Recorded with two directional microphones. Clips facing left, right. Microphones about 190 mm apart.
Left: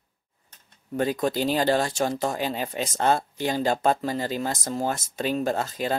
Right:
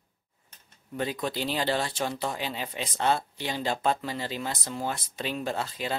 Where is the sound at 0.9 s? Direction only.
45° left (ahead or behind).